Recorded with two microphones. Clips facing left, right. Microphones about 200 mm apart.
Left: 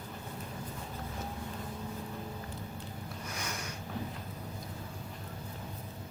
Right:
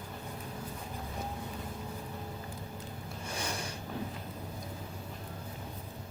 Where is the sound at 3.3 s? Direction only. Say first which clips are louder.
Right 4 dB; 30° right (ahead or behind).